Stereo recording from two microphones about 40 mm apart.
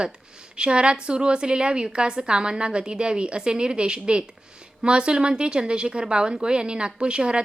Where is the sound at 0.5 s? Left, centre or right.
Right.